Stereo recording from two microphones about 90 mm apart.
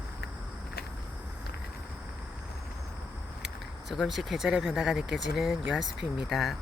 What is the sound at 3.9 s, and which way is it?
Speech, centre (ahead or behind).